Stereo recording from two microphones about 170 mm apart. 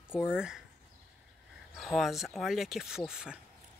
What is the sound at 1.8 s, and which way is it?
Speech, centre (ahead or behind).